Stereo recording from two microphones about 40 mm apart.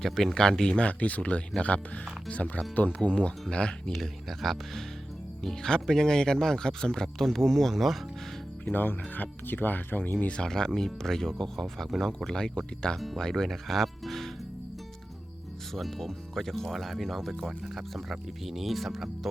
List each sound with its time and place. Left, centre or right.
0.0 s speech: centre
0.3 s speech: centre
0.7 s speech: left
4.4 s speech: centre
8.6 s speech: left
10.2 s speech: left; by 14.3 s centre
15.7 s speech: centre